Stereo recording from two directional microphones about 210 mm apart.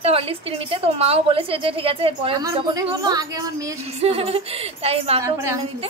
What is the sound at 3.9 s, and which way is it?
A woman's voice, 30° right (ahead or behind).